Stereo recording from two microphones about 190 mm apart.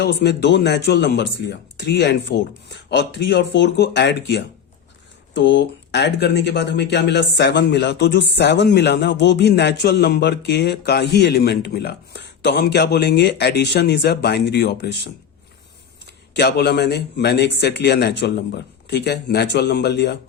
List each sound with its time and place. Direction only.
0.0 s a man's voice: 60° left (ahead or behind)
16.3 s a man's voice: 60° left (ahead or behind)